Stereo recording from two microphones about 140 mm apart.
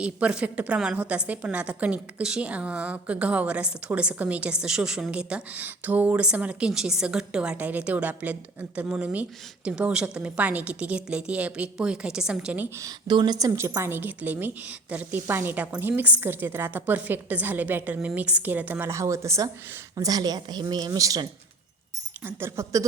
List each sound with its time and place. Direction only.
0.0 s a woman's voice: 10° right (ahead or behind)
13.1 s a woman's voice: 30° right (ahead or behind)
22.2 s a woman's voice: 15° right (ahead or behind)